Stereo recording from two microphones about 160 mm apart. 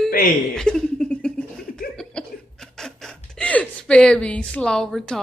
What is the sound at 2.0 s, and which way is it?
Chuckle, 5° left (ahead or behind).